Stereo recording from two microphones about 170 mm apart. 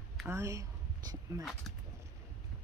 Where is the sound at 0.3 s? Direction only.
15° right (ahead or behind).